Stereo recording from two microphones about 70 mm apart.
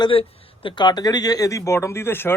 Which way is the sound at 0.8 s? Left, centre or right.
Left.